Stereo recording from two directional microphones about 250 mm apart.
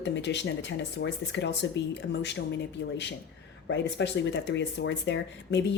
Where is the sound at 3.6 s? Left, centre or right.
Left.